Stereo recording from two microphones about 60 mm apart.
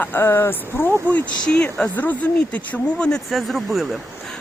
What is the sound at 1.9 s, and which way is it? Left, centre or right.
Speech, left.